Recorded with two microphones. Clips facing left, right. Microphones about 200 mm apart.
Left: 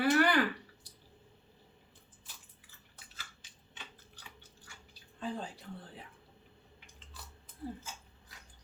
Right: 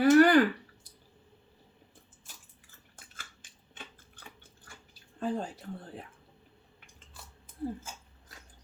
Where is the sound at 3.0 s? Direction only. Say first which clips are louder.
Right 2 dB; 50° right (ahead or behind).